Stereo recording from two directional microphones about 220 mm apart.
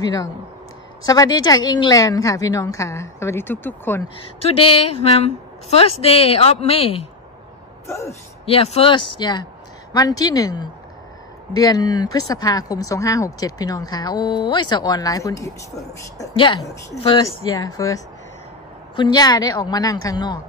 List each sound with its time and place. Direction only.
0.0 s speech: 15° left (ahead or behind)
4.4 s a woman's voice: 25° left (ahead or behind)
7.8 s speech: 10° left (ahead or behind)
8.5 s a woman's voice: 25° left (ahead or behind)